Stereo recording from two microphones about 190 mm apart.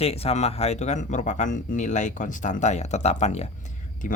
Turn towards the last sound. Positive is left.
turn(degrees=45)  # may be behind; listen again after turning